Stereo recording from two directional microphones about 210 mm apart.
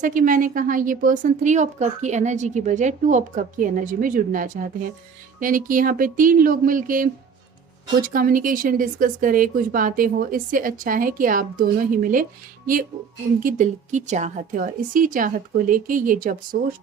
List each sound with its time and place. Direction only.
0.0 s a woman's voice: 40° right (ahead or behind)
13.4 s a woman's voice: 35° right (ahead or behind)